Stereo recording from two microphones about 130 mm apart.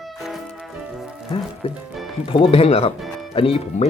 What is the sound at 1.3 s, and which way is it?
Speech, 45° left (ahead or behind).